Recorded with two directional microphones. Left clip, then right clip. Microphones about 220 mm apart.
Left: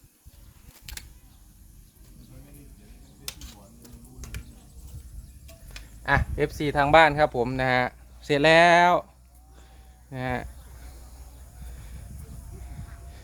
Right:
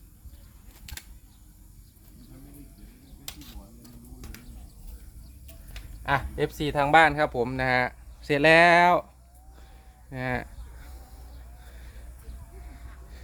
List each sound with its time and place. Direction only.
0.9 s typing: 20° left (ahead or behind)
6.0 s speech: 15° left (ahead or behind)
10.1 s a sound: centre (ahead or behind)